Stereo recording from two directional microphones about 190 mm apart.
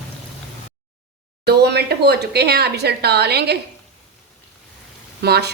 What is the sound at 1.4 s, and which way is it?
Speech, 60° right (ahead or behind).